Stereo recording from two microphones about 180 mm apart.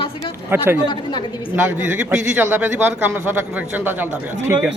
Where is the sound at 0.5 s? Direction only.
10° right (ahead or behind).